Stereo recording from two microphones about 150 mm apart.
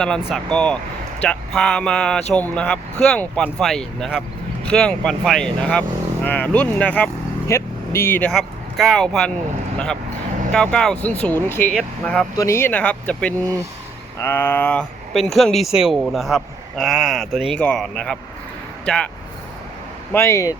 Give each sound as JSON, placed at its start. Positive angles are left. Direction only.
{"t": 0.0, "sound": "speech", "side_deg": 5}
{"t": 8.3, "sound": "speech", "side_deg": 0}
{"t": 11.7, "sound": "speech", "side_deg": 5}
{"t": 12.4, "sound": "speech", "side_deg": 15}
{"t": 20.1, "sound": "speech", "side_deg": 20}